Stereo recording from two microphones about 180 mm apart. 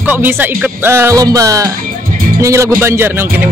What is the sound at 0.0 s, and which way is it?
Speech, 10° right (ahead or behind).